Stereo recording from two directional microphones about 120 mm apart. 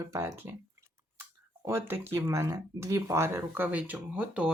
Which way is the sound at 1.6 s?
20° right (ahead or behind).